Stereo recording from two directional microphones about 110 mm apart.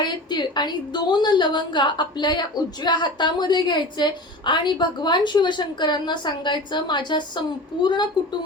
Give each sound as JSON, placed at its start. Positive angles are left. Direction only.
{"t": 0.0, "sound": "a woman's voice", "side_deg": 40}